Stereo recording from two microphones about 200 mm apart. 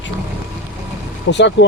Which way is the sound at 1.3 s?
60° left (ahead or behind).